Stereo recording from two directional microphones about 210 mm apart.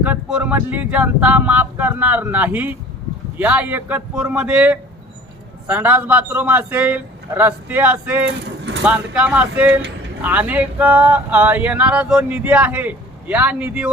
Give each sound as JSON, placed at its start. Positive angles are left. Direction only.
{"t": 0.0, "sound": "speech", "side_deg": -5}